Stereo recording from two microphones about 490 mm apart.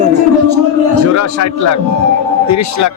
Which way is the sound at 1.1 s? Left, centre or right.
Left.